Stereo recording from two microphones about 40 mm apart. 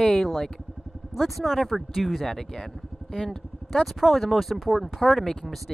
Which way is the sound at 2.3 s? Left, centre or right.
Centre.